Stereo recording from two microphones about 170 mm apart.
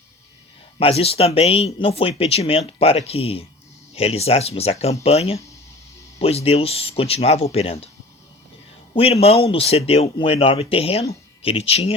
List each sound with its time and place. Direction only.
0.8 s speech: 35° left (ahead or behind)
9.2 s speech: 35° left (ahead or behind)